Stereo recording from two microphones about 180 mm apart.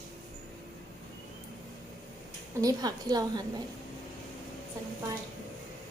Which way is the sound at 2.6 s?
20° right (ahead or behind).